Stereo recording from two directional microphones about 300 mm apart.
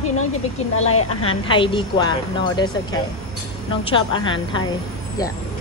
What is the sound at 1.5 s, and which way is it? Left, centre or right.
Speech, centre.